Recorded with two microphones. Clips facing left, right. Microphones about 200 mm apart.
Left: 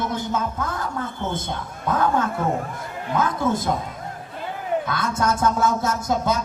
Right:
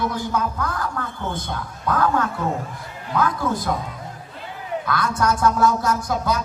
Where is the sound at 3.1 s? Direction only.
25° left (ahead or behind).